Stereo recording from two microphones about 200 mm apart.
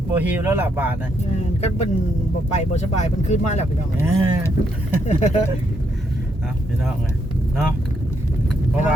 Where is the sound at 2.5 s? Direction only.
35° left (ahead or behind).